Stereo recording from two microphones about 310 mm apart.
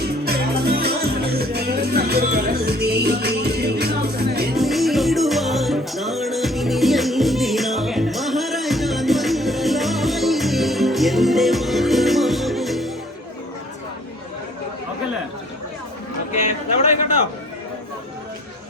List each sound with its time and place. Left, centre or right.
0.0 s music: right
4.5 s music: centre